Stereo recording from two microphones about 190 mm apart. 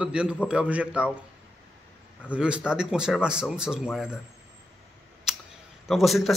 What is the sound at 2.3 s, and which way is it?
Speech, 5° right (ahead or behind).